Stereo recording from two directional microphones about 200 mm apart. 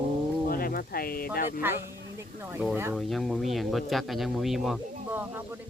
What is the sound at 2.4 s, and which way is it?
Speech, 10° right (ahead or behind).